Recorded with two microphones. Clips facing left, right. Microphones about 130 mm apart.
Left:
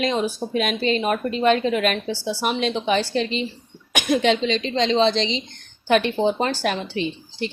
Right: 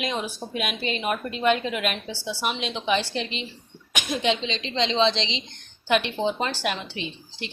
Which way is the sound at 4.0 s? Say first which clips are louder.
Left 6 dB; 55° left (ahead or behind).